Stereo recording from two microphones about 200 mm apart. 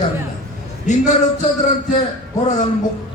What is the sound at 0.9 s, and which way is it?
Speech, 35° left (ahead or behind).